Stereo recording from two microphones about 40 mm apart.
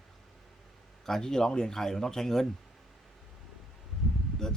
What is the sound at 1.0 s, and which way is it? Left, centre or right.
Speech, centre.